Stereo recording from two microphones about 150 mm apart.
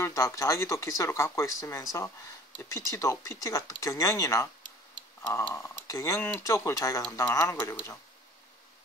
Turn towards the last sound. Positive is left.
turn(degrees=20)  # may be behind; listen again after turning